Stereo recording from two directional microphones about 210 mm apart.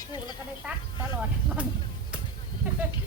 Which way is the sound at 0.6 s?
10° right (ahead or behind).